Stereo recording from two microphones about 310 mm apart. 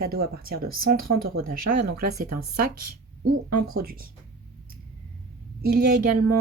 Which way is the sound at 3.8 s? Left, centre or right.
Right.